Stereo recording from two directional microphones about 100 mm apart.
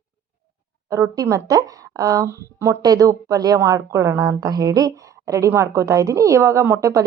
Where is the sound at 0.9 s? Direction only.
30° right (ahead or behind).